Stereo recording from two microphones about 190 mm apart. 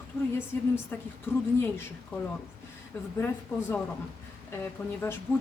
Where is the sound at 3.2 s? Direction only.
10° left (ahead or behind).